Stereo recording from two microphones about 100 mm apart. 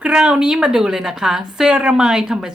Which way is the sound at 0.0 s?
10° right (ahead or behind).